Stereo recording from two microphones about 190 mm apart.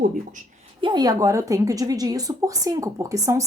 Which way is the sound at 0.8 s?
25° right (ahead or behind).